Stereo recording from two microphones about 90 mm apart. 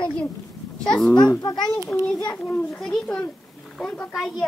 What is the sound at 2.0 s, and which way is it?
Speech, 45° left (ahead or behind).